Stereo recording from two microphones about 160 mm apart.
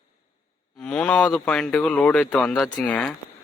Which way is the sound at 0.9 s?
5° left (ahead or behind).